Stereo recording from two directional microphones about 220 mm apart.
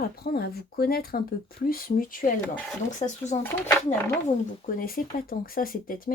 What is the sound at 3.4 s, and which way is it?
Speech, 10° left (ahead or behind).